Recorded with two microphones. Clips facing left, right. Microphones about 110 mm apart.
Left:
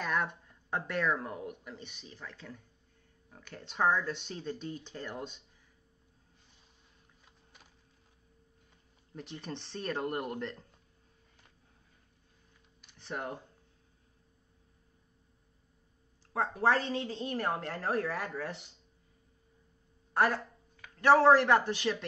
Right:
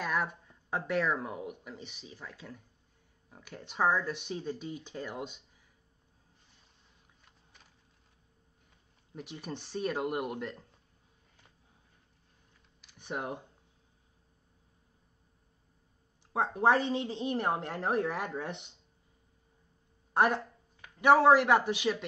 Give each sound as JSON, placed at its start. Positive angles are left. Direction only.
{"t": 0.0, "sound": "speech", "side_deg": -5}
{"t": 9.1, "sound": "speech", "side_deg": -5}
{"t": 12.9, "sound": "speech", "side_deg": -15}
{"t": 16.3, "sound": "a woman's voice", "side_deg": -15}
{"t": 20.2, "sound": "speech", "side_deg": -20}